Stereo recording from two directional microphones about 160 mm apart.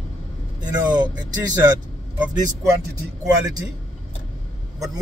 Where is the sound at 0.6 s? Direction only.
25° right (ahead or behind).